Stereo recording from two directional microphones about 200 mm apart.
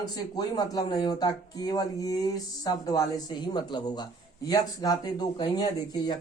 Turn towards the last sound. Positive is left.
turn(degrees=20)  # may be behind; listen again after turning